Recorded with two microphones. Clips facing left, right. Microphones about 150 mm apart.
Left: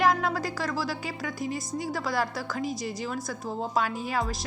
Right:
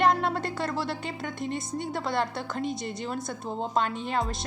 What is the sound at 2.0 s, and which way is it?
Speech, 25° right (ahead or behind).